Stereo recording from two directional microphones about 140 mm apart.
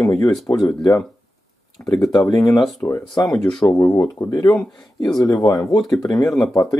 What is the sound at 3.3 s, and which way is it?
Speech, 5° left (ahead or behind).